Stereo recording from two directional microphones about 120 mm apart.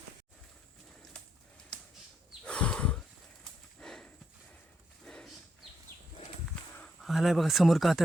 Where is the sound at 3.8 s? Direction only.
5° left (ahead or behind).